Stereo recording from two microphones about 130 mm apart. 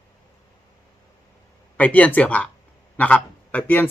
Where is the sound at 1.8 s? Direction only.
10° left (ahead or behind).